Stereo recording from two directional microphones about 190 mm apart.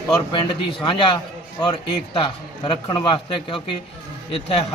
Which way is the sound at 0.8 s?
25° left (ahead or behind).